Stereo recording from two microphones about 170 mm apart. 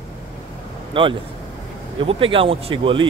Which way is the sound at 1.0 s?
30° right (ahead or behind).